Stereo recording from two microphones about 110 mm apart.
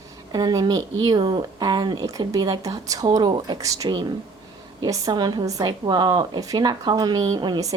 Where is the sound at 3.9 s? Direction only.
45° right (ahead or behind).